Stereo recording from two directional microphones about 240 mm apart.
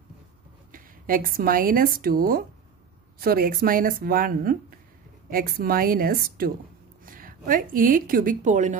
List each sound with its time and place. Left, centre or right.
0.7 s a woman's voice: right